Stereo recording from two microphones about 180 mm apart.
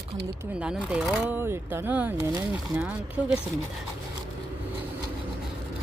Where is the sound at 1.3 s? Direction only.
10° right (ahead or behind).